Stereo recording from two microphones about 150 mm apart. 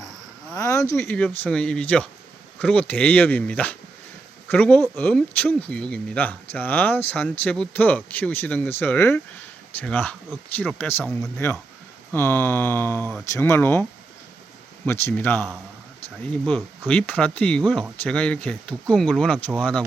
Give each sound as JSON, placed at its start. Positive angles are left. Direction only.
{"t": 0.5, "sound": "a sound", "side_deg": 20}
{"t": 1.1, "sound": "speech", "side_deg": 10}
{"t": 14.8, "sound": "speech", "side_deg": 15}
{"t": 16.8, "sound": "speech", "side_deg": 10}